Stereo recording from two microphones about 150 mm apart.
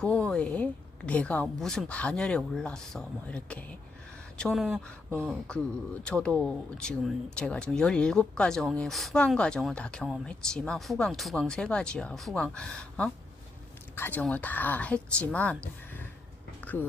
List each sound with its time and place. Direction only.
0.0 s speech: 5° left (ahead or behind)